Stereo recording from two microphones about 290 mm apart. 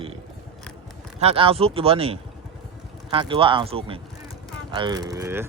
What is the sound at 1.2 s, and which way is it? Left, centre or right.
Speech, centre.